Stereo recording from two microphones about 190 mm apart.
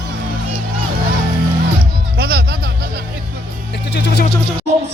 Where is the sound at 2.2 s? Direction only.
55° right (ahead or behind).